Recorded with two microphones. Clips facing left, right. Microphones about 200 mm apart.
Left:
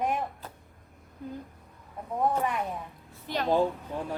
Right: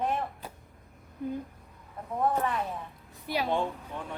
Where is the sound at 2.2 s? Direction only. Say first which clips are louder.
Left 1 dB; 10° left (ahead or behind).